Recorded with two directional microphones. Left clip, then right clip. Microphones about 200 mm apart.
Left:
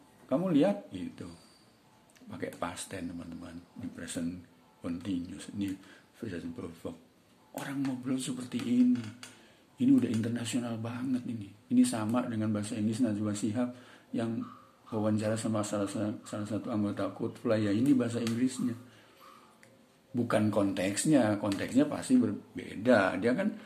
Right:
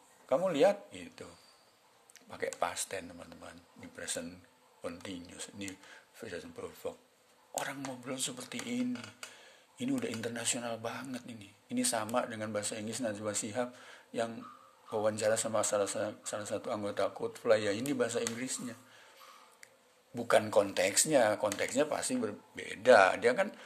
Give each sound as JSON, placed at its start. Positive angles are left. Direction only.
{"t": 0.3, "sound": "speech", "side_deg": -35}
{"t": 20.2, "sound": "speech", "side_deg": -40}